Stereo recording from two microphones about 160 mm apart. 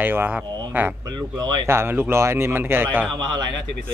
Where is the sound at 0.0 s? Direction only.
10° right (ahead or behind).